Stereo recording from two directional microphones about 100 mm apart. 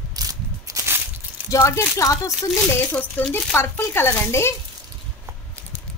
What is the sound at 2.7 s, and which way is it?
A woman's voice, 20° left (ahead or behind).